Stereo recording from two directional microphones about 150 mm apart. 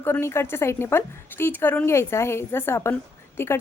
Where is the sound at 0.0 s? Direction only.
15° left (ahead or behind).